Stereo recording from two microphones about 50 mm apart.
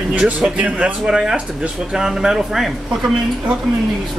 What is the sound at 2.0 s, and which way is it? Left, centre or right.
Speech, centre.